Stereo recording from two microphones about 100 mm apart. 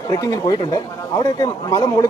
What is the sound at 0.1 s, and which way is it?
Speech, 40° left (ahead or behind).